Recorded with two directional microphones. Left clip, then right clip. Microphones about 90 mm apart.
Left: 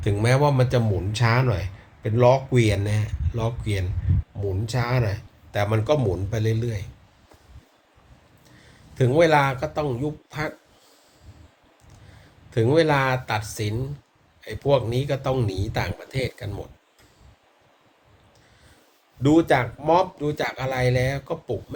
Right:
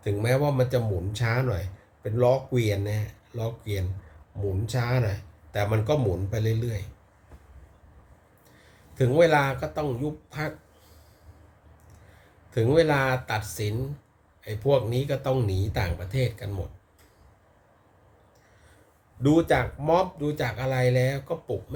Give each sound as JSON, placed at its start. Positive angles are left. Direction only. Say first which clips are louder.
{"t": 0.0, "sound": "speech", "louder": "left 4 dB", "side_deg": -25}
{"t": 9.0, "sound": "speech", "louder": "left 2 dB", "side_deg": -20}
{"t": 12.5, "sound": "speech", "louder": "left 2 dB", "side_deg": -25}
{"t": 19.2, "sound": "speech", "louder": "left 3 dB", "side_deg": -25}